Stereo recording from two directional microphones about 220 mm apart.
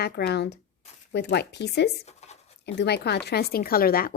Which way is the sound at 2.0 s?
30° left (ahead or behind).